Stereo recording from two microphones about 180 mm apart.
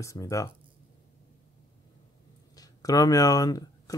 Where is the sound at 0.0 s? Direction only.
15° left (ahead or behind).